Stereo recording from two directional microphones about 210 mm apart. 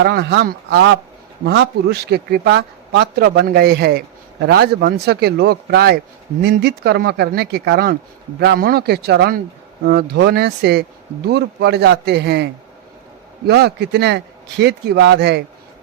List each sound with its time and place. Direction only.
0.0 s a man's voice: 55° right (ahead or behind)
13.5 s a man's voice: 50° right (ahead or behind)